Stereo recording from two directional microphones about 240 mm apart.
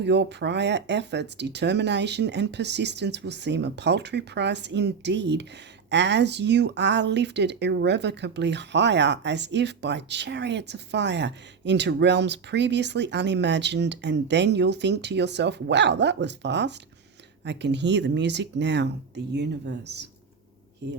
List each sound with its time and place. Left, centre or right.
0.0 s speech: right